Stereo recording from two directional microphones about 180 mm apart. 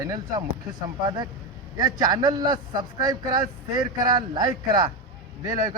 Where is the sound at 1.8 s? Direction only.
20° right (ahead or behind).